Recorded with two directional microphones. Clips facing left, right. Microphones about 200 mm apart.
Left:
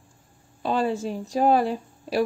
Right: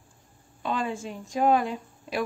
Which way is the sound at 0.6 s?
35° left (ahead or behind).